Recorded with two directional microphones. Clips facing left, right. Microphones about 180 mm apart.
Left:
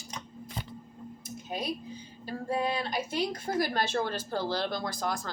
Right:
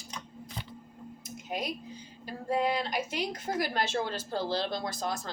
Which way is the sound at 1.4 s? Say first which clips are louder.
Left 1 dB; 15° right (ahead or behind).